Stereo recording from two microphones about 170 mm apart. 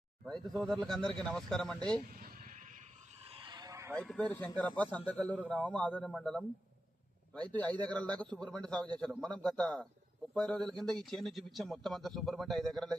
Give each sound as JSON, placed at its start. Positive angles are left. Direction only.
{"t": 0.3, "sound": "speech", "side_deg": 0}
{"t": 2.0, "sound": "bleat", "side_deg": -50}
{"t": 3.2, "sound": "vehicle", "side_deg": -30}
{"t": 3.9, "sound": "speech", "side_deg": 5}
{"t": 7.5, "sound": "speech", "side_deg": 10}